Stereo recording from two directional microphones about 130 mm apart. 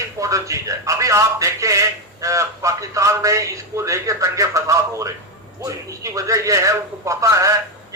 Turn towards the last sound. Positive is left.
turn(degrees=-25)  # may be behind; listen again after turning